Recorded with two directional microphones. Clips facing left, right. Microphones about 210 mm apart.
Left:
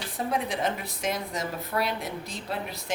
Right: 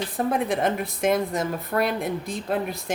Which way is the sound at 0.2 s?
55° right (ahead or behind).